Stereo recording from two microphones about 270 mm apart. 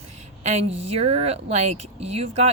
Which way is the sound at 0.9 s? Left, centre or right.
Right.